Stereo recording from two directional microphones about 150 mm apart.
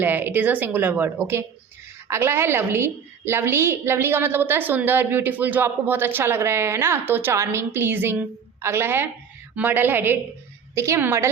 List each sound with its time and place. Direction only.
0.0 s a woman's voice: 10° right (ahead or behind)